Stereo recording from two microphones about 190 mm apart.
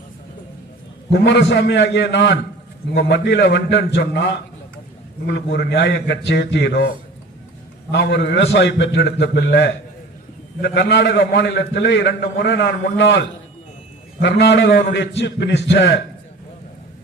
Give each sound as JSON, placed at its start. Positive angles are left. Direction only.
{"t": 1.1, "sound": "a man's voice", "side_deg": 65}